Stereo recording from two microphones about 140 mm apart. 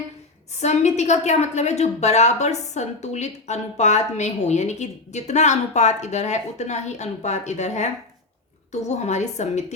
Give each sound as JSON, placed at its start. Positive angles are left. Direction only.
{"t": 0.6, "sound": "a woman's voice", "side_deg": 55}